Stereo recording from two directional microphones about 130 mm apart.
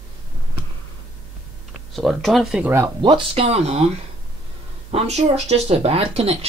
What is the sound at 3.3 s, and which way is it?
Speech, 50° right (ahead or behind).